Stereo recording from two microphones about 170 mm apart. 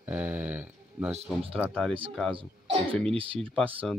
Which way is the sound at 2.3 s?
35° right (ahead or behind).